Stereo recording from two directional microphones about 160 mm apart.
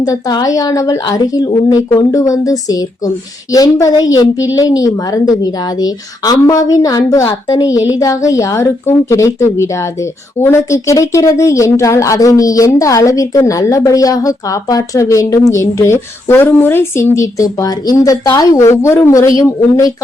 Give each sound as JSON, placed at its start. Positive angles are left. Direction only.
{"t": 0.0, "sound": "speech", "side_deg": 25}